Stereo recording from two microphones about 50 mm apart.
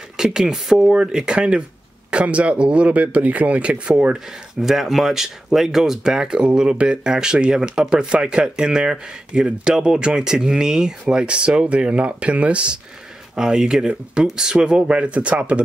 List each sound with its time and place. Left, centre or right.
0.2 s speech: centre
13.4 s speech: centre